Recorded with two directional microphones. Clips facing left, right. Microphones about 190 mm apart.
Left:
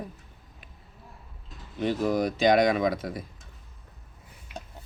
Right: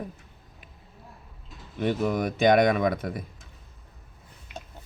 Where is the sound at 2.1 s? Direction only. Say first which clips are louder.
Right 1 dB; 55° right (ahead or behind).